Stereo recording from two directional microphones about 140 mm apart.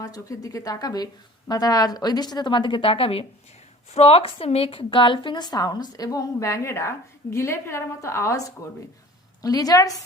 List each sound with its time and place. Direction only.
0.0 s a woman's voice: 25° left (ahead or behind)